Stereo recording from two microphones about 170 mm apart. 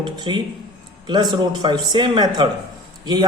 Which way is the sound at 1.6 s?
25° right (ahead or behind).